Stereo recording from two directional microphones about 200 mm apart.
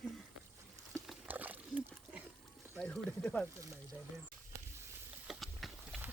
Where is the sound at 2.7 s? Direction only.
5° left (ahead or behind).